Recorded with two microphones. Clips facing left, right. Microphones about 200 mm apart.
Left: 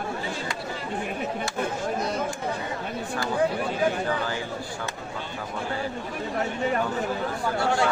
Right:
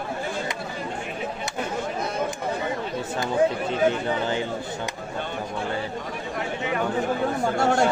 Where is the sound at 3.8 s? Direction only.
20° right (ahead or behind).